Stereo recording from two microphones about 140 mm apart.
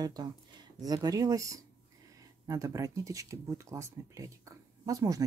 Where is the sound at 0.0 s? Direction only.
30° right (ahead or behind).